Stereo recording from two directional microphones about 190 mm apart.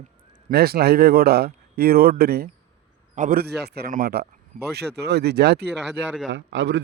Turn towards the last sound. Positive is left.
turn(degrees=-75)  # may be behind; listen again after turning